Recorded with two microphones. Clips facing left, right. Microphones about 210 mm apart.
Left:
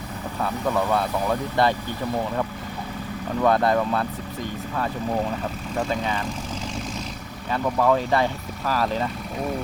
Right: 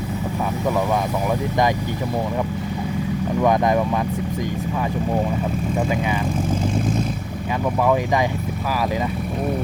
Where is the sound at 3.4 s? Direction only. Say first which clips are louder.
Right 1 dB; 15° right (ahead or behind).